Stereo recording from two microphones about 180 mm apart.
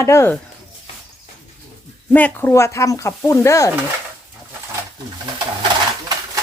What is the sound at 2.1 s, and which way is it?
A woman's voice, 10° left (ahead or behind).